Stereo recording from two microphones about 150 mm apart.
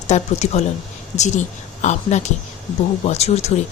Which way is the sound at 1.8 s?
50° left (ahead or behind).